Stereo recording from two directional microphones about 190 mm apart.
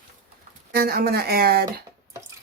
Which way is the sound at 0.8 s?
55° right (ahead or behind).